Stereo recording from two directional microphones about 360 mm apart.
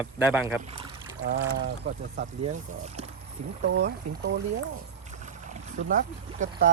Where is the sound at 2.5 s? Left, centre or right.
Centre.